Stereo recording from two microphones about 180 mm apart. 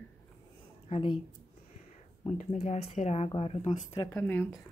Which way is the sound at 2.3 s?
40° left (ahead or behind).